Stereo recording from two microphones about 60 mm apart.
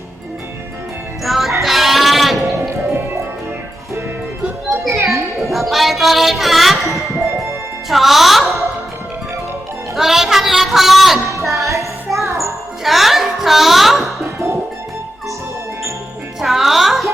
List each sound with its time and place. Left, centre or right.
1.2 s music: centre
1.6 s sheep: centre
2.4 s music: right
4.8 s children playing: centre
5.4 s music: centre
7.9 s speech: centre
9.9 s music: centre
14.3 s music: right
16.4 s music: centre